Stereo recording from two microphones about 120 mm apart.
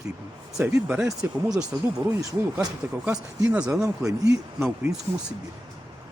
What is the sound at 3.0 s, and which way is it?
Speech, 10° right (ahead or behind).